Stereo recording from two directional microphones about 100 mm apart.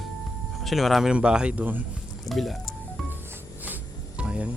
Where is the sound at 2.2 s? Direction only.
Centre (ahead or behind).